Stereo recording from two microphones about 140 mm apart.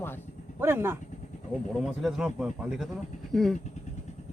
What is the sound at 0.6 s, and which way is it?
Speech, 15° right (ahead or behind).